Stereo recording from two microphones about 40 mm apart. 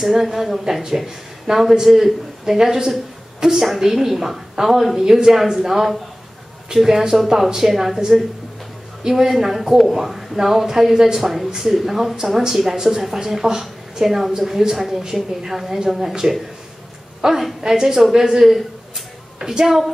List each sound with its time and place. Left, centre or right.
0.0 s a woman's voice: centre
9.0 s a woman's voice: centre